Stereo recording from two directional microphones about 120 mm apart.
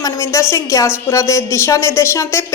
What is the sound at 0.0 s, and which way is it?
A woman's voice, 25° left (ahead or behind).